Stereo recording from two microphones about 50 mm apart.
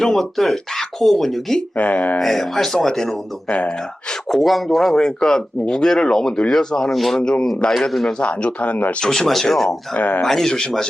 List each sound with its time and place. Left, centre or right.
0.0 s speech: centre
1.7 s speech: left
2.1 s speech: centre
3.5 s speech: left
4.3 s speech: centre
6.9 s speech: centre
7.2 s speech: centre
7.7 s speech: centre
8.2 s speech: left
9.0 s speech: centre
9.6 s speech: left
10.2 s speech: centre